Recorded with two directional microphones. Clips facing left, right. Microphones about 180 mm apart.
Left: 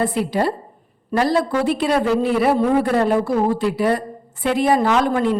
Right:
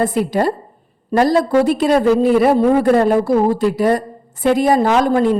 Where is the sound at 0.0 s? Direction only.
45° right (ahead or behind).